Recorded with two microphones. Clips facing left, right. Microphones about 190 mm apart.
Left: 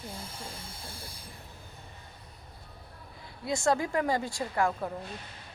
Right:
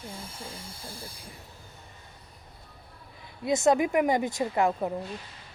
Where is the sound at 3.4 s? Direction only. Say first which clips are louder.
Right 5 dB; 20° right (ahead or behind).